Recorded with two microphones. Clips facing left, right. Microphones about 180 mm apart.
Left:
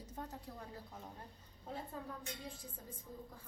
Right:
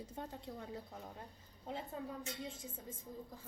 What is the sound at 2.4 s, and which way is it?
Speech, 25° right (ahead or behind).